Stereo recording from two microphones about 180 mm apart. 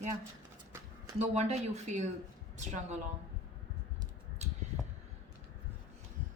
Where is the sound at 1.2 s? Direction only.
40° right (ahead or behind).